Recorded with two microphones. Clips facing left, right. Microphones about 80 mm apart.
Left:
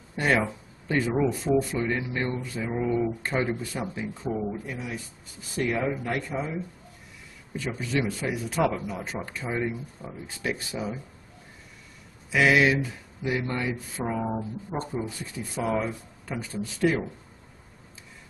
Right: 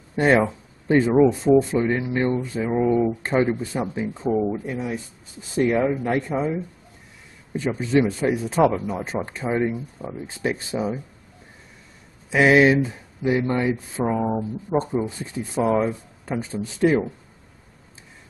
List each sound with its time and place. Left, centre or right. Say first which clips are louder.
0.1 s speech: right 7 dB; right
12.3 s speech: right 5 dB; right